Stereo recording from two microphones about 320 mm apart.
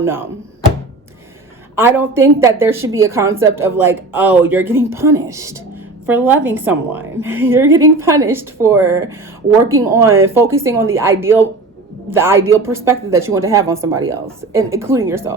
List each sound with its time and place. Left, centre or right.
0.0 s a woman's voice: centre
1.7 s a woman's voice: centre